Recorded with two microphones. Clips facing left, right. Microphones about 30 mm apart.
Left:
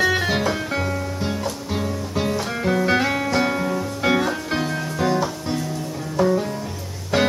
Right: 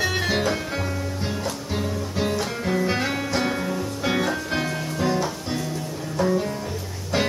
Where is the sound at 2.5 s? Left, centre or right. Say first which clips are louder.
Left 4 dB; centre.